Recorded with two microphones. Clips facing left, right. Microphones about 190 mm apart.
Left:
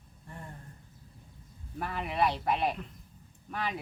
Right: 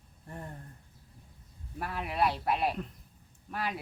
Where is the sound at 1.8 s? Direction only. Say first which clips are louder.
Left 1 dB; centre (ahead or behind).